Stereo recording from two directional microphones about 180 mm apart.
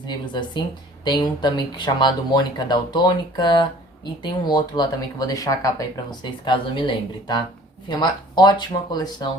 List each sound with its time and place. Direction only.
0.1 s speech: 25° left (ahead or behind)